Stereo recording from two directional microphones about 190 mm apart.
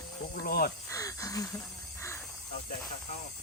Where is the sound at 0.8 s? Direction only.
15° left (ahead or behind).